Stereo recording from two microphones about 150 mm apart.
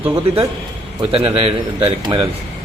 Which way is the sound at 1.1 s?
40° right (ahead or behind).